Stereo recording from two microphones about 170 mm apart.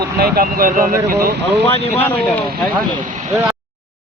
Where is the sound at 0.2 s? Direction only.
60° right (ahead or behind).